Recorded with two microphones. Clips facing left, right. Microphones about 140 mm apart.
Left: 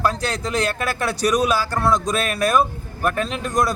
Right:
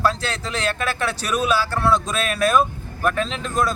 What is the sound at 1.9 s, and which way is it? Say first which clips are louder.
Speech: left 1 dB; 10° left (ahead or behind).